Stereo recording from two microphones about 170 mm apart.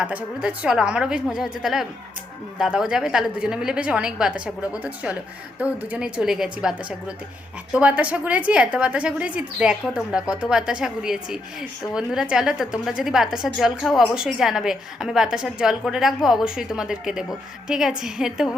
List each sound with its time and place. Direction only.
0.0 s a woman's voice: 5° right (ahead or behind)